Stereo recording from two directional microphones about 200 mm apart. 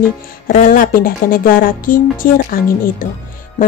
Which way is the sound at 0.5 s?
45° left (ahead or behind).